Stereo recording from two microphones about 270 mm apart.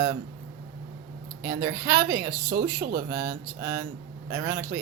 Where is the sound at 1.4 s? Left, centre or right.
Centre.